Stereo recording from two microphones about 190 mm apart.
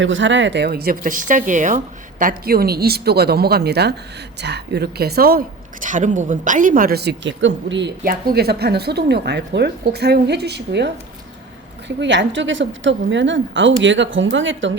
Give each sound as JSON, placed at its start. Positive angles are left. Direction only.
{"t": 0.0, "sound": "a woman's voice", "side_deg": -80}
{"t": 8.0, "sound": "a woman's voice", "side_deg": -55}